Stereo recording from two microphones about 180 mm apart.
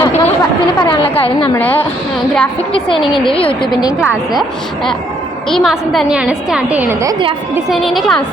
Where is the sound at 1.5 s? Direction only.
10° left (ahead or behind).